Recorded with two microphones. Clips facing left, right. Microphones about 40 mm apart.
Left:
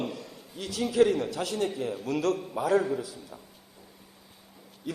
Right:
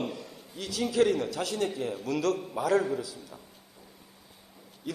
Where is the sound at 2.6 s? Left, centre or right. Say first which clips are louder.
Left 1 dB; left.